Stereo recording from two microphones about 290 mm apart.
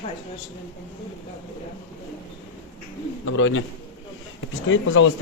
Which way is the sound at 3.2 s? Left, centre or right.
Left.